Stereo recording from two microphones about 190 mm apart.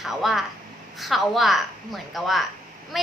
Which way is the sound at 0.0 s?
Centre (ahead or behind).